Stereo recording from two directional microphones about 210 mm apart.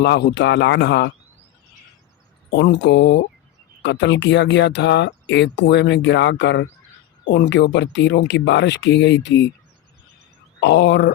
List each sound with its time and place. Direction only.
0.0 s speech: 55° left (ahead or behind)
2.6 s speech: 55° left (ahead or behind)
10.6 s speech: 55° left (ahead or behind)